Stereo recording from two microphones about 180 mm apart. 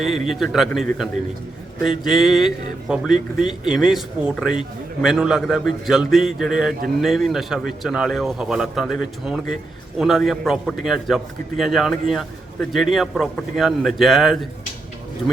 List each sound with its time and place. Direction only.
0.0 s a man's voice: centre (ahead or behind)